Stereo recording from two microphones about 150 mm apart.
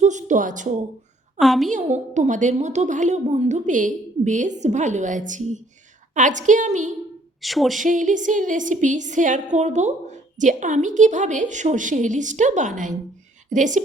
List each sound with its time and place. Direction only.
0.0 s a woman's voice: 55° right (ahead or behind)
1.4 s speech: centre (ahead or behind)
1.7 s a woman's voice: 50° right (ahead or behind)
7.4 s speech: centre (ahead or behind)
7.8 s a woman's voice: 60° right (ahead or behind)